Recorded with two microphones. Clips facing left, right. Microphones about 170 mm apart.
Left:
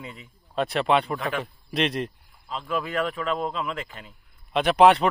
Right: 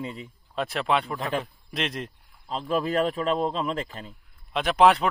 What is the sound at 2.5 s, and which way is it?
Speech, 35° right (ahead or behind).